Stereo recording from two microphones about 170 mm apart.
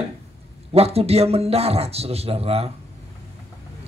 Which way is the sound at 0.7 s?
35° right (ahead or behind).